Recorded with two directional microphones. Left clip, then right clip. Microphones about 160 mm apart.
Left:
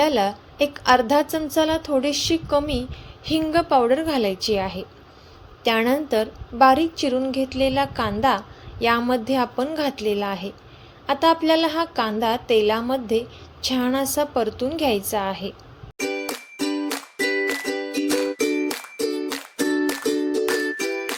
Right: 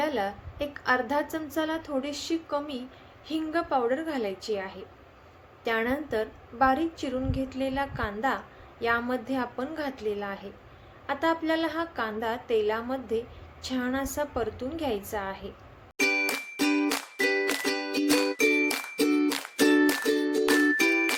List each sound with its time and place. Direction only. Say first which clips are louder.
0.0 s a woman's voice: left 9 dB; 45° left (ahead or behind)
16.0 s music: right 1 dB; 5° left (ahead or behind)